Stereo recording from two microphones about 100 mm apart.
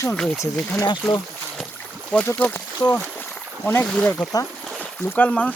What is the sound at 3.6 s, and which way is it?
Speech, 20° left (ahead or behind).